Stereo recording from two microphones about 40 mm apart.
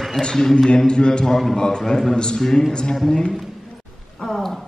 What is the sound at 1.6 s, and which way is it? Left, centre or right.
A man's voice, centre.